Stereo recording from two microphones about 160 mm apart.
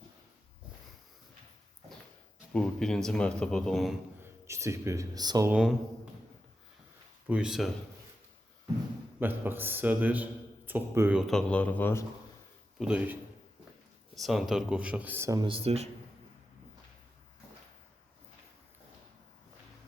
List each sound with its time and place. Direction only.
2.5 s speech: 5° left (ahead or behind)
4.2 s speech: 15° right (ahead or behind)
5.5 s speech: 5° right (ahead or behind)
7.3 s speech: 5° right (ahead or behind)
9.2 s speech: 15° right (ahead or behind)
11.2 s speech: 5° left (ahead or behind)
12.8 s speech: 5° right (ahead or behind)
14.2 s speech: centre (ahead or behind); by 15.4 s 20° right (ahead or behind)
15.4 s speech: 40° right (ahead or behind)